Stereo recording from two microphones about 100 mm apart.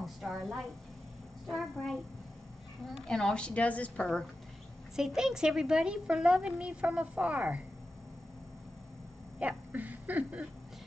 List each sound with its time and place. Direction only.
0.0 s a woman's voice: centre (ahead or behind)
3.1 s a woman's voice: 5° left (ahead or behind)
4.9 s a woman's voice: 5° right (ahead or behind)
9.4 s speech: 15° right (ahead or behind)